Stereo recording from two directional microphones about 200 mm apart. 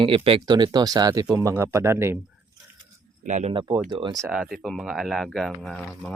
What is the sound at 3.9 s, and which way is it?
Speech, 25° right (ahead or behind).